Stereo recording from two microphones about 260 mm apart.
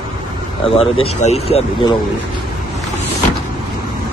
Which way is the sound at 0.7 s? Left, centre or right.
Left.